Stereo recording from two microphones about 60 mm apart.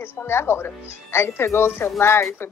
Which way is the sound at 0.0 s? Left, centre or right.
Left.